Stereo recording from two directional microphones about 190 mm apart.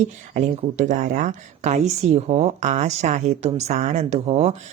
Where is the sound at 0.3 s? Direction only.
40° right (ahead or behind).